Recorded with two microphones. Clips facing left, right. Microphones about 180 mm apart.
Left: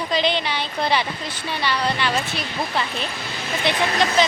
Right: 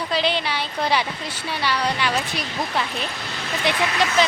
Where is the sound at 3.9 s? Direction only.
35° left (ahead or behind).